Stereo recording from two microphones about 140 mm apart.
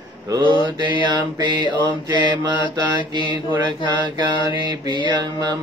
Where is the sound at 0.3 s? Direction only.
35° right (ahead or behind).